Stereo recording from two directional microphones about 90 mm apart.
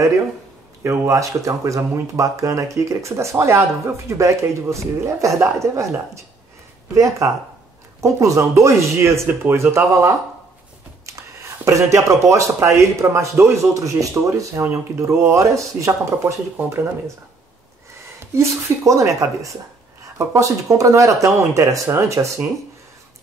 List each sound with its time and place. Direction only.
0.8 s speech: 35° right (ahead or behind)
16.5 s speech: 25° right (ahead or behind)
18.2 s speech: 30° right (ahead or behind)